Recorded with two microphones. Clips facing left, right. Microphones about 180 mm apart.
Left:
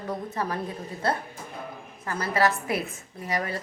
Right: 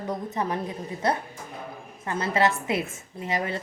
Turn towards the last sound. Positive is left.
turn(degrees=-25)  # may be behind; listen again after turning